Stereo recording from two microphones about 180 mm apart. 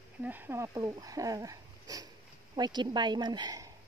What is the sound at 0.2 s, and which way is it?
Speech, 10° right (ahead or behind).